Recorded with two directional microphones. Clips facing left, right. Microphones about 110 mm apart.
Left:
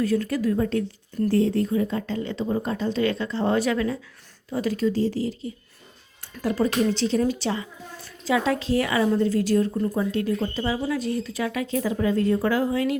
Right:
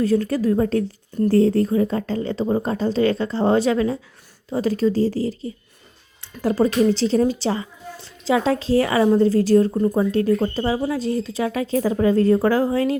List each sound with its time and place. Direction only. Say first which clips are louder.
0.0 s a woman's voice: right 4 dB; 30° right (ahead or behind)